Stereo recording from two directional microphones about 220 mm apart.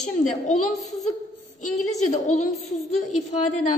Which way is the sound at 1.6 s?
35° left (ahead or behind).